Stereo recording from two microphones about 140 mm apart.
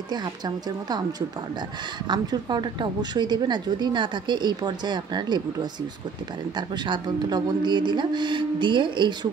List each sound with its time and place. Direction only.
2.0 s a woman's voice: 30° right (ahead or behind)